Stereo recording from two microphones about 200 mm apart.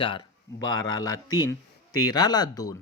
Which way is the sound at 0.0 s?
25° left (ahead or behind).